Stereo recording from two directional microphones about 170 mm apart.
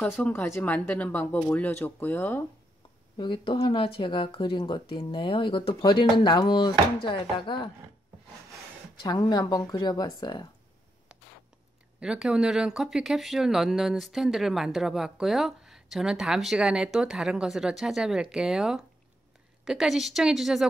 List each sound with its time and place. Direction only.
0.0 s speech: 10° left (ahead or behind)
3.2 s speech: 30° left (ahead or behind)
9.0 s speech: 25° left (ahead or behind)
12.0 s speech: 5° right (ahead or behind)